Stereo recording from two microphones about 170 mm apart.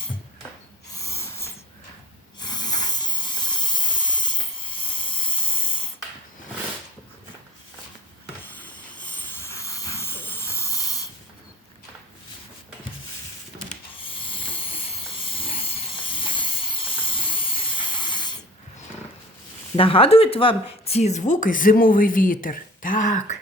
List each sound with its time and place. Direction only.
1.0 s snort: 15° left (ahead or behind)
2.4 s hiss: 25° left (ahead or behind)
9.0 s train: 15° left (ahead or behind)
13.9 s snoring: 30° left (ahead or behind)
15.2 s hiss: 30° left (ahead or behind)
19.7 s speech: 35° left (ahead or behind)